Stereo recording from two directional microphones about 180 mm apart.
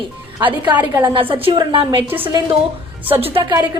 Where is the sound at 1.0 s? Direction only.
30° right (ahead or behind).